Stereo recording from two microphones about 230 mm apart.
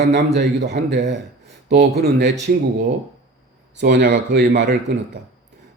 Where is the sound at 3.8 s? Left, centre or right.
Right.